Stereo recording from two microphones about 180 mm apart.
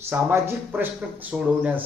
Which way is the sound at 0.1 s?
10° right (ahead or behind).